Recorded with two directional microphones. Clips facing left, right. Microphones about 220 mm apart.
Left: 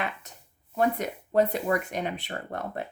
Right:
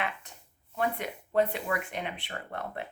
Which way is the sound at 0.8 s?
40° left (ahead or behind).